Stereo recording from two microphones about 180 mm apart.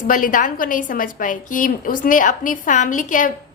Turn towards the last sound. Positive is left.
turn(degrees=45)  # may be behind; listen again after turning